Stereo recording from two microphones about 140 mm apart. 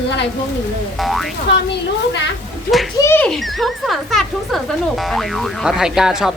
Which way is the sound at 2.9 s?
15° left (ahead or behind).